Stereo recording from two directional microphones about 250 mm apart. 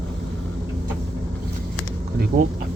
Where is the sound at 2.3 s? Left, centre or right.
Right.